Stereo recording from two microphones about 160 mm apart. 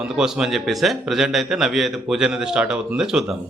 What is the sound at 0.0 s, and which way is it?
A man's voice, 5° right (ahead or behind).